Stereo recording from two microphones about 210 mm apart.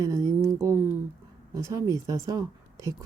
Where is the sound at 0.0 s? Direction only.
15° right (ahead or behind).